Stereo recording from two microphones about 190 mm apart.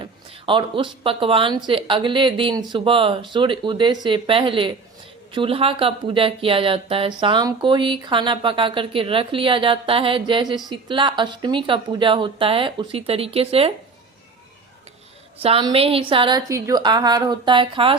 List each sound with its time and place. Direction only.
0.0 s a sound: 25° right (ahead or behind)
1.0 s speech: 30° right (ahead or behind)
15.4 s speech: 30° right (ahead or behind)
16.5 s speech: 15° right (ahead or behind)